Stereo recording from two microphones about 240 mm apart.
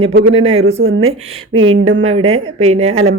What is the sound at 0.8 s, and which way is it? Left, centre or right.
Speech, right.